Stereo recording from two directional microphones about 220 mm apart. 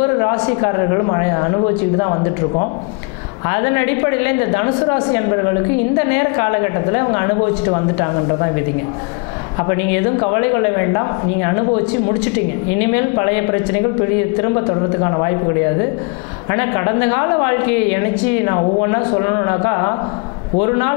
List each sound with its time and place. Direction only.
0.2 s a woman's voice: 20° left (ahead or behind)
9.6 s a woman's voice: 20° left (ahead or behind)
13.1 s a woman's voice: 20° left (ahead or behind)
16.4 s a woman's voice: 15° left (ahead or behind)